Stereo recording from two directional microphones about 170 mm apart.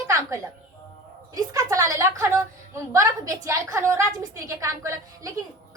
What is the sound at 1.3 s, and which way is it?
A woman's voice, 20° right (ahead or behind).